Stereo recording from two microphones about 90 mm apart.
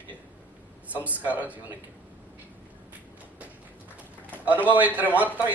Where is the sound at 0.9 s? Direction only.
15° right (ahead or behind).